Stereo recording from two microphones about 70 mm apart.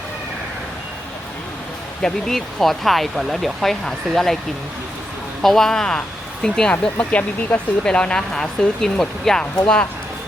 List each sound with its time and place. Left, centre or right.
2.0 s speech: centre
5.4 s speech: centre